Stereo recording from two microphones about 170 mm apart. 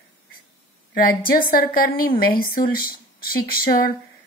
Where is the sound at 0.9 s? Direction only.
60° left (ahead or behind).